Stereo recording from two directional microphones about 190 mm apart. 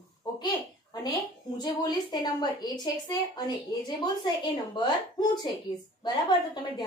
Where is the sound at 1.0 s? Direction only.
20° left (ahead or behind).